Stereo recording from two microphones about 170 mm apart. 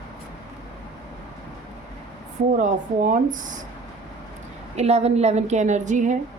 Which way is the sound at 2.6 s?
50° right (ahead or behind).